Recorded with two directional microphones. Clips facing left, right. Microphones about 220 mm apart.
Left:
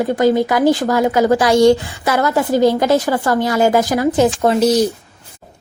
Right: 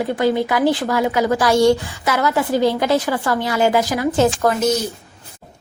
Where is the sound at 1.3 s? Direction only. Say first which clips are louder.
Left 2 dB; 20° left (ahead or behind).